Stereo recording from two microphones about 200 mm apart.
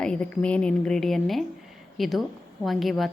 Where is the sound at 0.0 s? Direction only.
5° left (ahead or behind).